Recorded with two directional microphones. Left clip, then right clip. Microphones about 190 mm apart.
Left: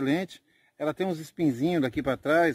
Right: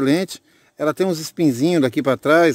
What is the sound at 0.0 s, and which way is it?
Speech, 65° right (ahead or behind).